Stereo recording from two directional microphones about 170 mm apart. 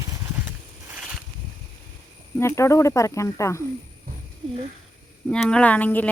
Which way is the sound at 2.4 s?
15° left (ahead or behind).